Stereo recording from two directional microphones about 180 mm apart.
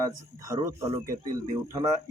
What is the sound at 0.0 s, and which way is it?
A man's voice, 20° right (ahead or behind).